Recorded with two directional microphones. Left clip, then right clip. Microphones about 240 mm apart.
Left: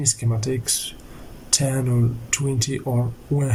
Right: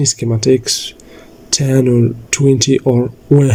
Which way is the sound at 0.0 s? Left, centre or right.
Right.